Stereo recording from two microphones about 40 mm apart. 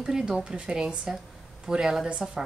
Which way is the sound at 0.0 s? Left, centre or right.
Centre.